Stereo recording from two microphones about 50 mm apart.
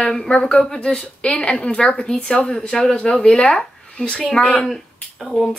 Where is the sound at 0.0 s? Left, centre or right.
Centre.